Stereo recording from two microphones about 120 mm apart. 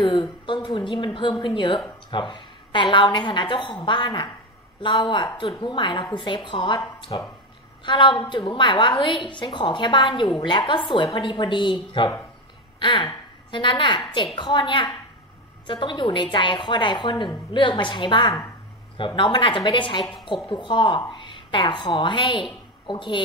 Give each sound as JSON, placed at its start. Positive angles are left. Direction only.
{"t": 0.0, "sound": "a woman's voice", "side_deg": 45}